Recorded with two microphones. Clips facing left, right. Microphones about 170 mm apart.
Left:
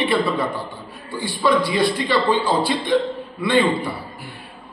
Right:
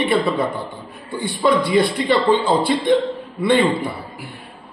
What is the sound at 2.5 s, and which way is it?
Speech, 55° right (ahead or behind).